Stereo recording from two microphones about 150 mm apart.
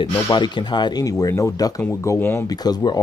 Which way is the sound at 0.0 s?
30° left (ahead or behind).